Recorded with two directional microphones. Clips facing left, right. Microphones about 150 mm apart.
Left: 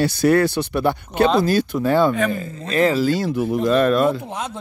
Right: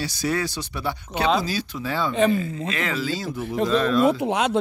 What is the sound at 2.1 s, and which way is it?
Speech, 25° right (ahead or behind).